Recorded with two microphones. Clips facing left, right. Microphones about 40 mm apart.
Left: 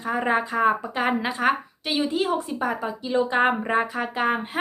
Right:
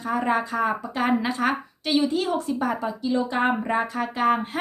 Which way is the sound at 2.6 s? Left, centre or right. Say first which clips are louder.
Right 1 dB; centre.